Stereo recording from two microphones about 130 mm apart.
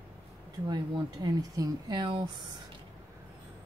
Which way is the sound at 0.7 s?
30° right (ahead or behind).